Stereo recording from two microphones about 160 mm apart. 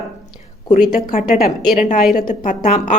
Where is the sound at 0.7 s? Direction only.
60° left (ahead or behind).